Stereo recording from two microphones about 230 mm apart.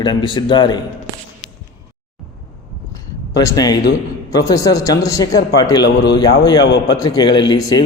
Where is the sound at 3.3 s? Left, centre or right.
Centre.